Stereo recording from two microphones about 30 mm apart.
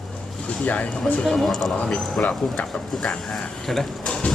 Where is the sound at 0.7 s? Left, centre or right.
Left.